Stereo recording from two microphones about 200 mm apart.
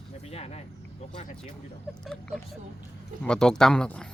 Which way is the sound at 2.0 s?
5° left (ahead or behind).